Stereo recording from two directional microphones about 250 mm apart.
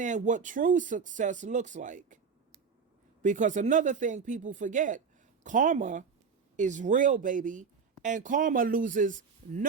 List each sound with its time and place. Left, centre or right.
0.0 s speech: right
3.2 s speech: right